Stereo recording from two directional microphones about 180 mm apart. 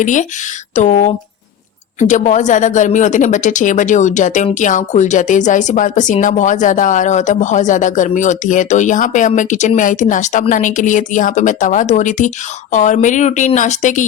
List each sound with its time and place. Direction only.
0.0 s a woman's voice: 45° left (ahead or behind)